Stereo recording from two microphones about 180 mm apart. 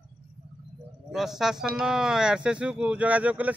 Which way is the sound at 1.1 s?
Centre (ahead or behind).